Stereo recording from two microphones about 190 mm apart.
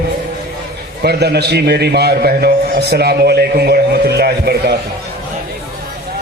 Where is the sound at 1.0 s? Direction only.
55° right (ahead or behind).